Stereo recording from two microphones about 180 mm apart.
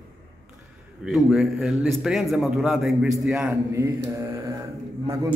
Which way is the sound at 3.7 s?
15° right (ahead or behind).